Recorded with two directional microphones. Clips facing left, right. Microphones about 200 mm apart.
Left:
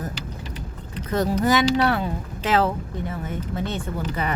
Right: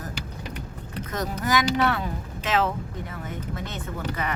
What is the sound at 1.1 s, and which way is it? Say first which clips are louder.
Speech: left 6 dB; 30° left (ahead or behind).